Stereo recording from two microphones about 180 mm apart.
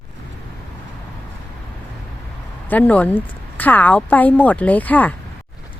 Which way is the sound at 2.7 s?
10° left (ahead or behind).